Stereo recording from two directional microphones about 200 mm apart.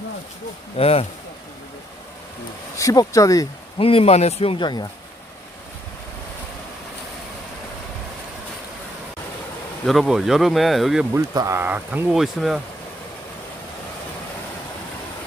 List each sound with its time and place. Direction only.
0.8 s speech: 30° left (ahead or behind)
2.7 s speech: 15° left (ahead or behind)
3.8 s speech: 30° left (ahead or behind)
9.8 s speech: centre (ahead or behind)
11.1 s speech: 15° right (ahead or behind)